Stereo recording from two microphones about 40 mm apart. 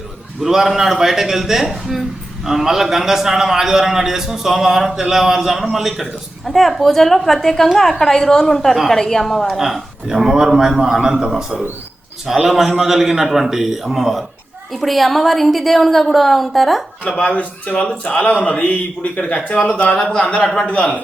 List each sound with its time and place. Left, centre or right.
0.4 s a man's voice: centre
9.6 s a woman's voice: centre
12.5 s a woman's voice: centre
17.1 s speech: left
20.0 s speech: centre
20.2 s speech: left